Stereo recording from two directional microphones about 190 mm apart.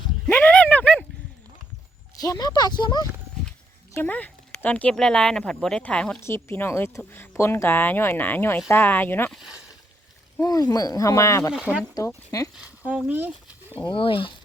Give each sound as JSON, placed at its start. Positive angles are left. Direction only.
{"t": 0.3, "sound": "a sound", "side_deg": 10}
{"t": 2.2, "sound": "speech", "side_deg": 20}
{"t": 3.9, "sound": "speech", "side_deg": 10}
{"t": 11.5, "sound": "speech", "side_deg": -5}
{"t": 11.9, "sound": "speech", "side_deg": 20}
{"t": 12.5, "sound": "speech", "side_deg": -5}
{"t": 13.7, "sound": "speech", "side_deg": 30}